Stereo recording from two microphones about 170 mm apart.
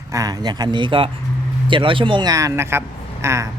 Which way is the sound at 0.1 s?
20° right (ahead or behind).